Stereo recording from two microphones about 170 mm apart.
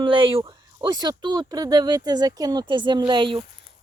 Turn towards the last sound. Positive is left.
turn(degrees=-30)  # may be behind; listen again after turning